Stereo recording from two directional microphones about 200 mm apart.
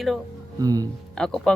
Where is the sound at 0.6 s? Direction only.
20° right (ahead or behind).